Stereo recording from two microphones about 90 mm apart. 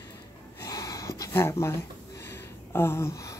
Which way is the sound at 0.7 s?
40° left (ahead or behind).